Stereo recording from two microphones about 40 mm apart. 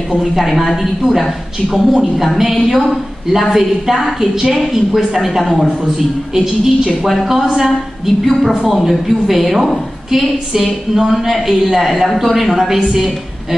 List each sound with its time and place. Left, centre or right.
0.3 s a woman's voice: centre
6.3 s a woman's voice: centre